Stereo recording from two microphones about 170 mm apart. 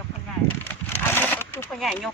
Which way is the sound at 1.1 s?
10° left (ahead or behind).